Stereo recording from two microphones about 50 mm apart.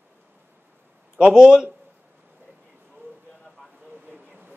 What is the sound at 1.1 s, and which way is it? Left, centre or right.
Speech, centre.